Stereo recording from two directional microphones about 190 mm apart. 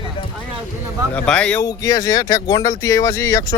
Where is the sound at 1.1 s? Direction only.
5° left (ahead or behind).